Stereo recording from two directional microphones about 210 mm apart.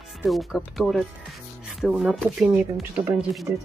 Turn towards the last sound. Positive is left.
turn(degrees=0)  # may be behind; listen again after turning